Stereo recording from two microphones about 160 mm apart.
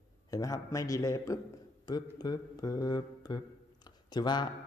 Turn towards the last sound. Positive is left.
turn(degrees=25)  # may be behind; listen again after turning